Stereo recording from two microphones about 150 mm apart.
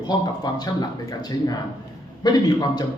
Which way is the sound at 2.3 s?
25° left (ahead or behind).